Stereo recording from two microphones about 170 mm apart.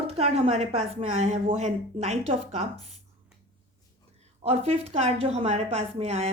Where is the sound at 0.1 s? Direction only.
35° right (ahead or behind).